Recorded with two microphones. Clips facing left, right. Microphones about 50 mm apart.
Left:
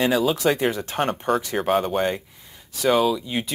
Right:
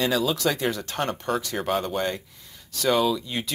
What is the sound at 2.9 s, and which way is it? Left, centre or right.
Speech, centre.